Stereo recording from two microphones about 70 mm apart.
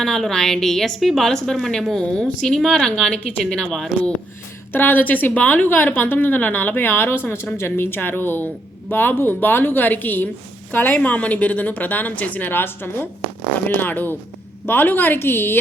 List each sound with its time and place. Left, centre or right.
0.0 s a woman's voice: centre
4.7 s a woman's voice: left